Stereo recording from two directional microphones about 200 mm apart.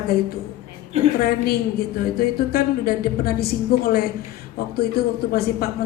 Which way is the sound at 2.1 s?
50° left (ahead or behind).